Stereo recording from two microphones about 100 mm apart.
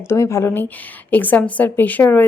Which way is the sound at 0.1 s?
25° left (ahead or behind).